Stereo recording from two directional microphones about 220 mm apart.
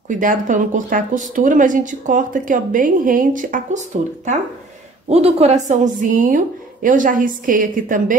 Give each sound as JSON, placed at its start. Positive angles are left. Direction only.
{"t": 0.1, "sound": "a woman's voice", "side_deg": -35}
{"t": 5.1, "sound": "a woman's voice", "side_deg": -30}